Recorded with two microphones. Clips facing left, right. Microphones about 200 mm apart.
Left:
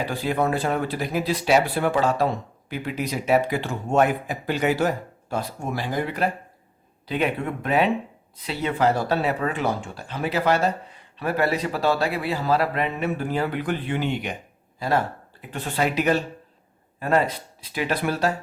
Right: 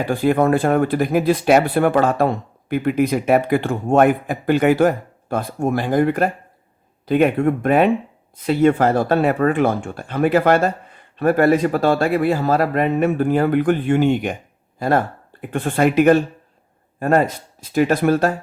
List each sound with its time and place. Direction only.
0.0 s speech: 50° right (ahead or behind)